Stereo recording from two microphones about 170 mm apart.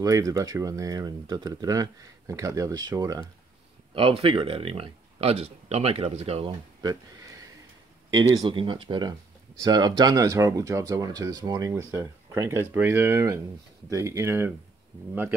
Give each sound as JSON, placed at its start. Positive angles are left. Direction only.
{"t": 0.0, "sound": "speech", "side_deg": -20}
{"t": 3.9, "sound": "speech", "side_deg": -35}
{"t": 6.8, "sound": "a sound", "side_deg": -25}
{"t": 8.3, "sound": "speech", "side_deg": -25}